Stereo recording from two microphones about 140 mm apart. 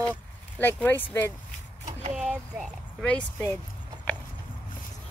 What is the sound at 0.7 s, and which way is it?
Speech, 15° left (ahead or behind).